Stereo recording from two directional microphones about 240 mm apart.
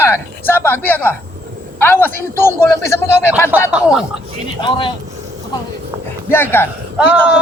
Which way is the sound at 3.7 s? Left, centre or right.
Centre.